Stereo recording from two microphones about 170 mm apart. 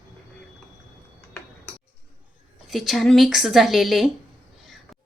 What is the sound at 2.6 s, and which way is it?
Speech, centre (ahead or behind).